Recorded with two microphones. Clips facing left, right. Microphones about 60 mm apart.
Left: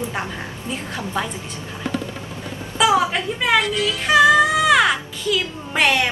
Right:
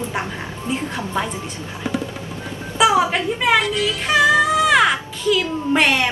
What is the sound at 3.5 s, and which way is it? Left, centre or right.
Music, centre.